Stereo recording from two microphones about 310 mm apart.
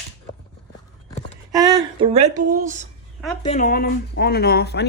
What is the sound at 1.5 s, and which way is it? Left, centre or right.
Speech, centre.